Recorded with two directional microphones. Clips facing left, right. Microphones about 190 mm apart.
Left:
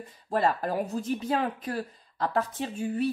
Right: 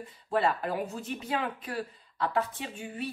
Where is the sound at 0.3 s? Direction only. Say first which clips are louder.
Left 2 dB; 40° left (ahead or behind).